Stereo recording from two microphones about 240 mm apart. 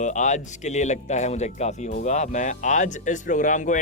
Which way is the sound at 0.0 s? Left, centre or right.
Left.